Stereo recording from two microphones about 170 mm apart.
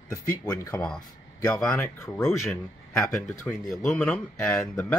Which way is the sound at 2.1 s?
Centre (ahead or behind).